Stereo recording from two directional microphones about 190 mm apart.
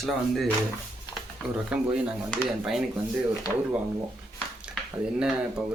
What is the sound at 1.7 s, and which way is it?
Speech, 5° right (ahead or behind).